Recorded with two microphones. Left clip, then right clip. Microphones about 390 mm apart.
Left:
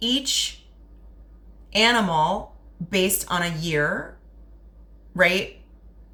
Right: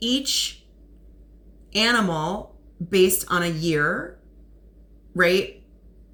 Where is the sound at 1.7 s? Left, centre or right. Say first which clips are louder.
Left 2 dB; centre.